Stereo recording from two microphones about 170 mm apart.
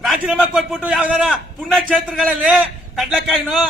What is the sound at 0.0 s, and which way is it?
A man's voice, centre (ahead or behind).